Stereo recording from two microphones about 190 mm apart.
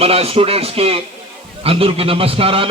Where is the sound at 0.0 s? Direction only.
30° right (ahead or behind).